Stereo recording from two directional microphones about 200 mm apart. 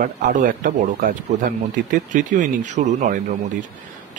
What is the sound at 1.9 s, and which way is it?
Speech, 40° right (ahead or behind).